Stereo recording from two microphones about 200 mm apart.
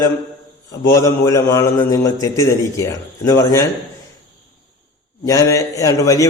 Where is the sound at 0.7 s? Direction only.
15° left (ahead or behind).